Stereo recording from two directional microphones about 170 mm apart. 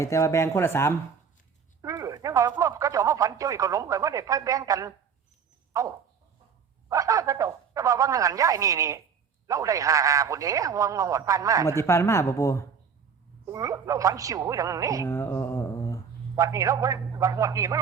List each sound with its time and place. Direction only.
0.0 s speech: 15° left (ahead or behind)
1.8 s speech: 20° right (ahead or behind)
11.8 s speech: 15° left (ahead or behind)
13.4 s speech: 20° right (ahead or behind)
15.0 s a sound: 15° left (ahead or behind)
16.3 s speech: 20° right (ahead or behind)